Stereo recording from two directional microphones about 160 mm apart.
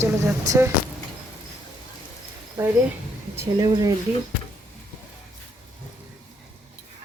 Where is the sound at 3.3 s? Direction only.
20° right (ahead or behind).